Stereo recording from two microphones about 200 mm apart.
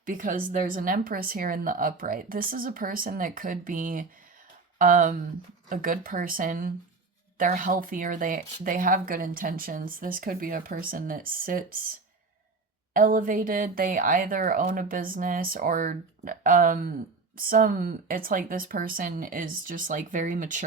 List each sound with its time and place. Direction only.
0.0 s speech: 40° right (ahead or behind)
12.9 s speech: 45° right (ahead or behind)